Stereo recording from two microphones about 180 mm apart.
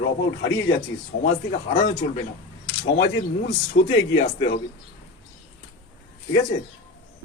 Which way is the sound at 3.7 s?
90° left.